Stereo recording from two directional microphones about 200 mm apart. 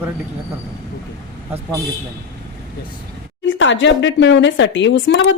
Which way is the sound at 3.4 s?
70° left (ahead or behind).